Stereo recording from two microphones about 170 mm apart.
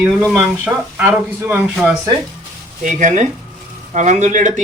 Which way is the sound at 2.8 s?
45° right (ahead or behind).